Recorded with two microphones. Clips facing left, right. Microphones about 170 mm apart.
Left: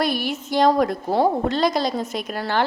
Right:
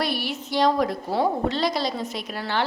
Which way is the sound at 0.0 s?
45° left (ahead or behind).